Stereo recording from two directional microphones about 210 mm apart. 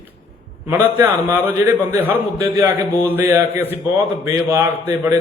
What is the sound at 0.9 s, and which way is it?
A man's voice, 10° right (ahead or behind).